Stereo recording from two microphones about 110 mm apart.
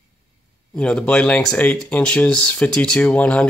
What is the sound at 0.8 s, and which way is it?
Speech, 10° left (ahead or behind).